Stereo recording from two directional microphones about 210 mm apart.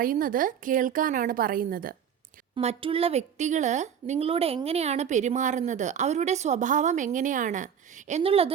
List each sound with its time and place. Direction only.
0.0 s a woman's voice: 40° right (ahead or behind)
2.6 s a woman's voice: 30° right (ahead or behind)